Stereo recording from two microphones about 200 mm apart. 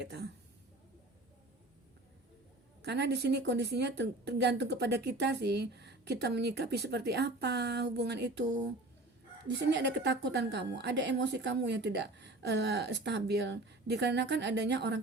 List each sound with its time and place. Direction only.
0.0 s speech: 55° right (ahead or behind)
2.8 s speech: 55° right (ahead or behind)